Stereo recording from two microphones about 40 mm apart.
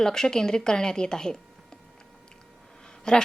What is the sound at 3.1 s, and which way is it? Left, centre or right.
Speech, centre.